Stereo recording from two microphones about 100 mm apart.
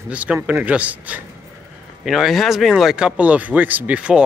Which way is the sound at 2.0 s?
Centre (ahead or behind).